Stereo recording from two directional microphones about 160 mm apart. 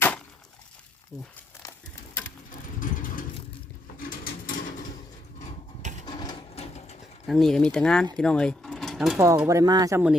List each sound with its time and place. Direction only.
2.8 s vehicle: 55° left (ahead or behind)
3.9 s a sound: 65° left (ahead or behind)
6.1 s sewing machine: 25° left (ahead or behind)
6.6 s sewing machine: 45° left (ahead or behind)
7.3 s speech: centre (ahead or behind)
9.1 s speech: 20° right (ahead or behind)